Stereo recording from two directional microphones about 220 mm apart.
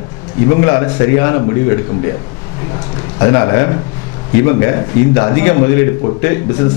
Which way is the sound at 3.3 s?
15° left (ahead or behind).